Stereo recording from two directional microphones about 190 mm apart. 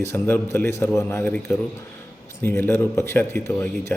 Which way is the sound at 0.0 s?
10° left (ahead or behind).